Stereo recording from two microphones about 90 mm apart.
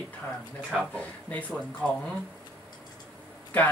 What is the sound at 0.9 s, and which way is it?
A woman's voice, 15° left (ahead or behind).